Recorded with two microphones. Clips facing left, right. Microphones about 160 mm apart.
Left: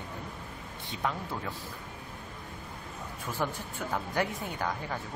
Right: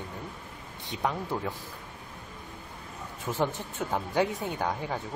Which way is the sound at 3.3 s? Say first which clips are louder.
Right 4 dB; 20° right (ahead or behind).